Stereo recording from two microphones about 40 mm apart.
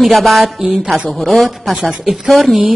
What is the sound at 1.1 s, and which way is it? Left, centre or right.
Speech, centre.